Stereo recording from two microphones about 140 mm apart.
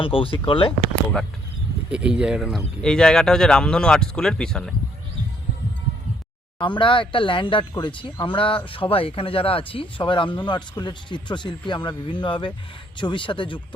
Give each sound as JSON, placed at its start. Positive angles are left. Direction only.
{"t": 0.0, "sound": "speech", "side_deg": 40}
{"t": 1.9, "sound": "speech", "side_deg": -5}
{"t": 2.8, "sound": "speech", "side_deg": 5}
{"t": 6.6, "sound": "speech", "side_deg": 35}